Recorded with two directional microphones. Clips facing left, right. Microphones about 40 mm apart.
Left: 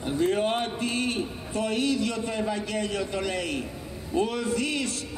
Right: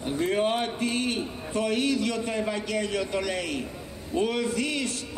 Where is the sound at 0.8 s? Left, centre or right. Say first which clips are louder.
Even; right.